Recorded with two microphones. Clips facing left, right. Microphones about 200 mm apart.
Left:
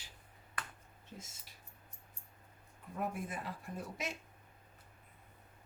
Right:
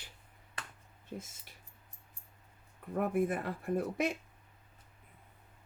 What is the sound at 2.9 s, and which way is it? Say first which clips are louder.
Speech: right 9 dB; 60° right (ahead or behind).